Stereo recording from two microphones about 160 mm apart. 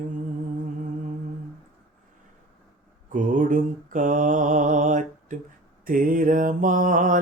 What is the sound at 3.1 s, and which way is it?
Mantra, 55° right (ahead or behind).